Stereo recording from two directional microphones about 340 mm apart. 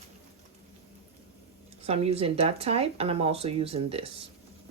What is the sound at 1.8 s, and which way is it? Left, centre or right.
Speech, centre.